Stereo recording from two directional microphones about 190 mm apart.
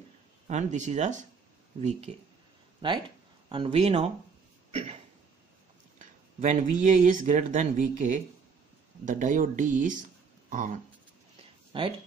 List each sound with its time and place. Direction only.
0.5 s speech: 40° right (ahead or behind)
2.8 s speech: 25° right (ahead or behind)
4.6 s a sound: 35° right (ahead or behind)
5.9 s speech: 40° right (ahead or behind)
11.7 s speech: 25° right (ahead or behind)